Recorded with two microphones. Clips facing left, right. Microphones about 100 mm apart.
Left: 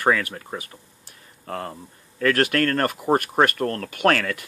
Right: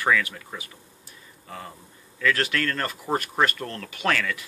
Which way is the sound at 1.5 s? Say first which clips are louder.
Left 8 dB; 60° left (ahead or behind).